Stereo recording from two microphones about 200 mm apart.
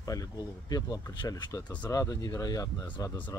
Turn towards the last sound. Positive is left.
turn(degrees=10)  # may be behind; listen again after turning